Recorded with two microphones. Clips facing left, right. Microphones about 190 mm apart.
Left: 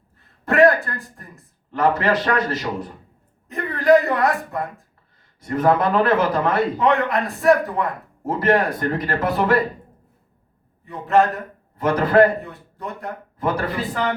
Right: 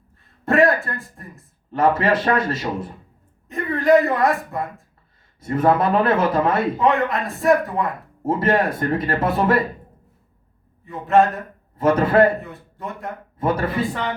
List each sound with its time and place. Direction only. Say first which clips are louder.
0.5 s speech: left 2 dB; centre (ahead or behind)
1.7 s speech: right 1 dB; 25° right (ahead or behind)
3.5 s a man's voice: even; centre (ahead or behind)
5.4 s speech: even; 25° right (ahead or behind)
6.8 s a man's voice: even; centre (ahead or behind)
8.2 s speech: even; 25° right (ahead or behind)
10.8 s a man's voice: right 1 dB; centre (ahead or behind)
11.8 s speech: even; 25° right (ahead or behind)
12.4 s speech: even; centre (ahead or behind)
13.4 s speech: right 2 dB; 25° right (ahead or behind)